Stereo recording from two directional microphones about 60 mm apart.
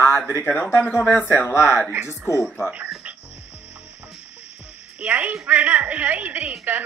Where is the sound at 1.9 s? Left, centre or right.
Right.